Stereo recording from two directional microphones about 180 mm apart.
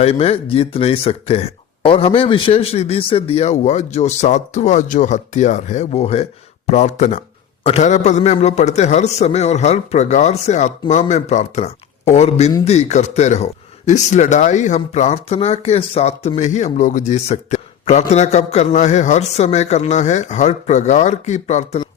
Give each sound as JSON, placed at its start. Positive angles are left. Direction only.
{"t": 0.0, "sound": "speech", "side_deg": 35}